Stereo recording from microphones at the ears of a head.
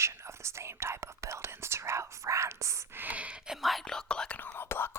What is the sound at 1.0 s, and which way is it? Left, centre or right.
Speech, right.